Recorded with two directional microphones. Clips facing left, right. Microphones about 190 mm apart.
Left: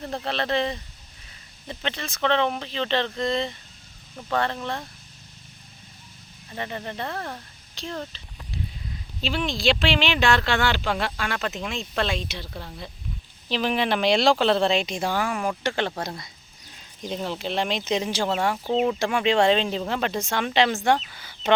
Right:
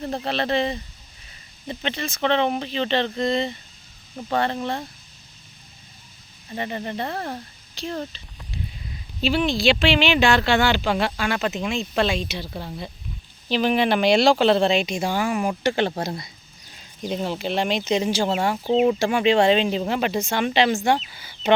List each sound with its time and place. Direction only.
0.3 s speech: 5° right (ahead or behind)
4.5 s speech: 20° right (ahead or behind)
6.5 s speech: 15° right (ahead or behind)
7.1 s speech: 25° right (ahead or behind)
7.8 s speech: 10° right (ahead or behind)
9.2 s speech: 5° right (ahead or behind)
17.0 s speech: 5° right (ahead or behind)